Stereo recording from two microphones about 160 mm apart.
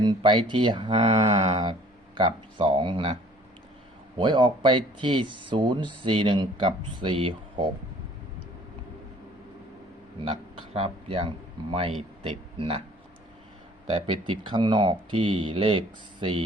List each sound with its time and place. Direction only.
0.0 s speech: 30° right (ahead or behind)
4.2 s speech: 30° right (ahead or behind)
10.8 s a man's voice: 35° right (ahead or behind)
13.9 s speech: 35° right (ahead or behind)